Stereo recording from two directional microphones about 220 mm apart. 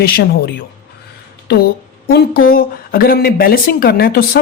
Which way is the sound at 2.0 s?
45° left (ahead or behind).